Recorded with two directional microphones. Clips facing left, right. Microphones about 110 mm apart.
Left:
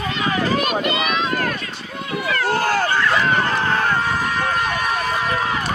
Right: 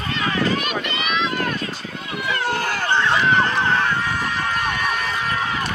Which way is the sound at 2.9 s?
25° right (ahead or behind).